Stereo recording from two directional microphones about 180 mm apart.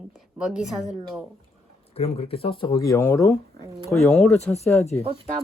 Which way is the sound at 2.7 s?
15° left (ahead or behind).